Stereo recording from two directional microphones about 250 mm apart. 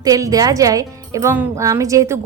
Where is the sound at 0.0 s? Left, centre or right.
Centre.